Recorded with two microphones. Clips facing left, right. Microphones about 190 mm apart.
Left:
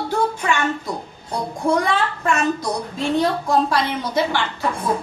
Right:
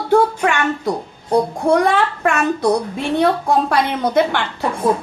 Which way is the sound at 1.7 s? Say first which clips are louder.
Right 6 dB; 65° right (ahead or behind).